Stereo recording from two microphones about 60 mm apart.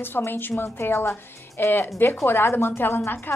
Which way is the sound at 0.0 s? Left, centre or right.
Left.